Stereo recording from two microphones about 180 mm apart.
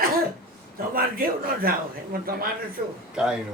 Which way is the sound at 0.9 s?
55° right (ahead or behind).